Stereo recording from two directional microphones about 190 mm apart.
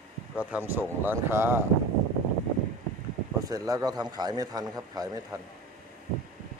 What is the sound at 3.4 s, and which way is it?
A man's voice, 20° right (ahead or behind).